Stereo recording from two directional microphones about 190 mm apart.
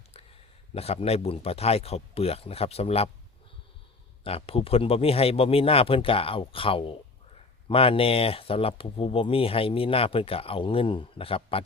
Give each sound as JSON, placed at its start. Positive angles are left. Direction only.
{"t": 0.7, "sound": "speech", "side_deg": 30}
{"t": 4.2, "sound": "speech", "side_deg": 30}